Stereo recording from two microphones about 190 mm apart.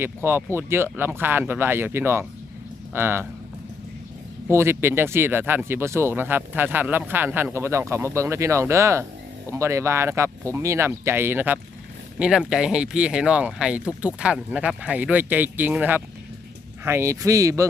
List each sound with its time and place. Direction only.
0.0 s speech: 10° right (ahead or behind)
4.4 s speech: 10° right (ahead or behind)